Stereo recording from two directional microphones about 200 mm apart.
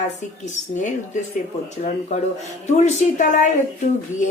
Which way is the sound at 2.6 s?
35° left (ahead or behind).